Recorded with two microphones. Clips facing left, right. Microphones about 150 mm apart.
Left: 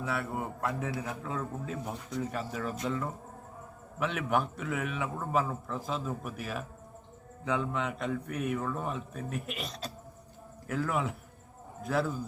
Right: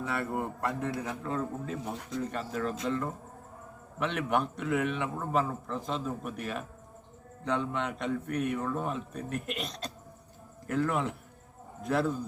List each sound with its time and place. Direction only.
0.0 s a man's voice: 5° left (ahead or behind)